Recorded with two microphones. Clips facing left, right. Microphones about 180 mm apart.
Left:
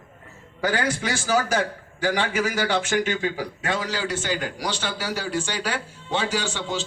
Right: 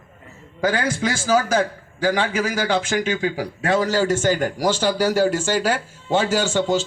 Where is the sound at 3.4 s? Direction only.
30° right (ahead or behind).